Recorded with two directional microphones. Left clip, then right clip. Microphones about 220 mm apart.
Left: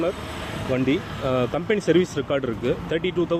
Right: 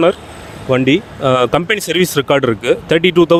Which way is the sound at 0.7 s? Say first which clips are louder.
Right 11 dB; 45° right (ahead or behind).